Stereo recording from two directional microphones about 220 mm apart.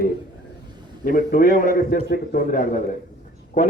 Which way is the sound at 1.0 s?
40° left (ahead or behind).